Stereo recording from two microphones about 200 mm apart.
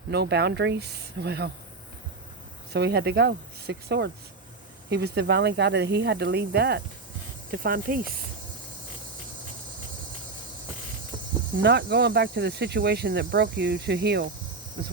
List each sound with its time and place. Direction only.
0.1 s speech: 55° right (ahead or behind)
2.7 s speech: 55° right (ahead or behind)
11.6 s speech: 55° right (ahead or behind)